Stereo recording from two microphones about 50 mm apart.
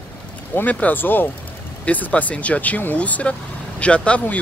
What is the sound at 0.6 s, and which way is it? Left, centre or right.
Speech, left.